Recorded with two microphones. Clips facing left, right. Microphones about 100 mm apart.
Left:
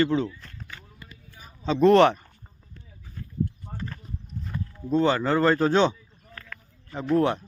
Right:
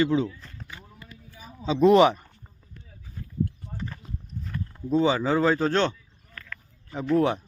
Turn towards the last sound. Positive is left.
turn(degrees=-5)  # may be behind; listen again after turning